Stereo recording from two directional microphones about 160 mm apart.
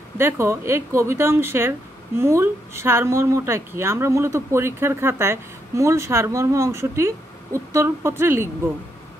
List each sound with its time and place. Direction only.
0.2 s speech: 15° right (ahead or behind)